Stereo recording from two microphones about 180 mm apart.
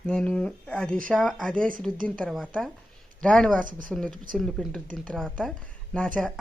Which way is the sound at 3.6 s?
50° right (ahead or behind).